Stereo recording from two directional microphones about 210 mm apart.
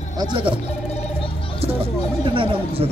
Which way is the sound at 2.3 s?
25° right (ahead or behind).